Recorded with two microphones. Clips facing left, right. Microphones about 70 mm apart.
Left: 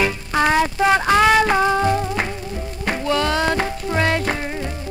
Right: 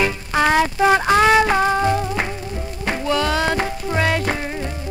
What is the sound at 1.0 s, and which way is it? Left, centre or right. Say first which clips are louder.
Music: even; centre.